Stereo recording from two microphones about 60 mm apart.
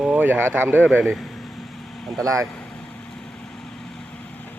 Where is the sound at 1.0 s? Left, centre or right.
Centre.